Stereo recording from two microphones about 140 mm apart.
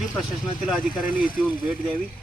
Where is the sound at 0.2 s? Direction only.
Centre (ahead or behind).